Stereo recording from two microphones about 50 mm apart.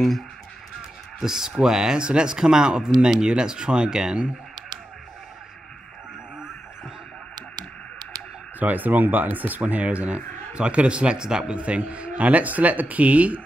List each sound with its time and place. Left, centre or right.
1.2 s speech: centre
8.5 s speech: right; by 11.5 s centre
11.5 s speech: right